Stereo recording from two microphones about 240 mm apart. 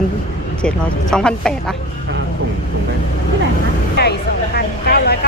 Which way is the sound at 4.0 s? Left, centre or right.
Left.